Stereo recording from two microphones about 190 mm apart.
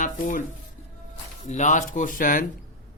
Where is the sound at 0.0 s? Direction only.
45° left (ahead or behind).